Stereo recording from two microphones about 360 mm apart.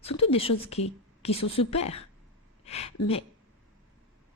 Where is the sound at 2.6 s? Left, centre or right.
Centre.